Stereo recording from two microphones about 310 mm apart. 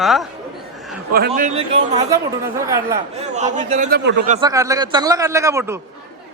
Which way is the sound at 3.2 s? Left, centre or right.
Right.